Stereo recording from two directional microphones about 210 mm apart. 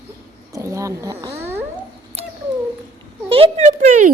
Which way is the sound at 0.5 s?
15° right (ahead or behind).